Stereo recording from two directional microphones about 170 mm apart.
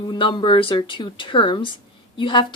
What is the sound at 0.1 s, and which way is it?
A woman's voice, 30° left (ahead or behind).